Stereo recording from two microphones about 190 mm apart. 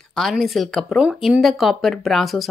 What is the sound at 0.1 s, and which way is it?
Speech, centre (ahead or behind).